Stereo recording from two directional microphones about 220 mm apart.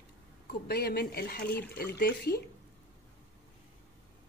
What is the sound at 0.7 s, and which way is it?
Speech, 45° left (ahead or behind).